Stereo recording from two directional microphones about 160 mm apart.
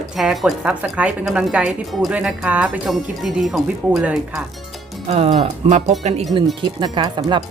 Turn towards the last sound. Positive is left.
turn(degrees=-30)  # may be behind; listen again after turning